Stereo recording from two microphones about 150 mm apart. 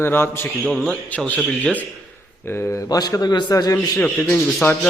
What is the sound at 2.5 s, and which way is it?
A man's voice, 15° left (ahead or behind).